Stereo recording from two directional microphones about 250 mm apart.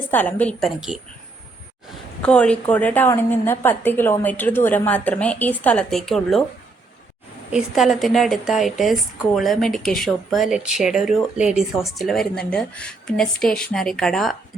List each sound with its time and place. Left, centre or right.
0.1 s a woman's voice: centre
2.2 s a woman's voice: centre
7.5 s a woman's voice: centre